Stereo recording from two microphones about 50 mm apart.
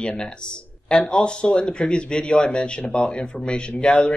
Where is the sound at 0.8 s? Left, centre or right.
Centre.